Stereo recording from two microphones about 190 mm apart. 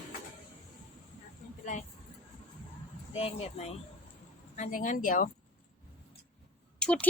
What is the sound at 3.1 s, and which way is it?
Speech, 30° left (ahead or behind).